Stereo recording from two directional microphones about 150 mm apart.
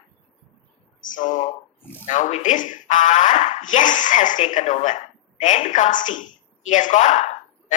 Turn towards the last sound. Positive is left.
turn(degrees=55)  # may be behind; listen again after turning